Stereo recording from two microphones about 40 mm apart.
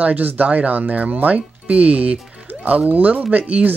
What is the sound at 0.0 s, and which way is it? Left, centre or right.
Speech, right.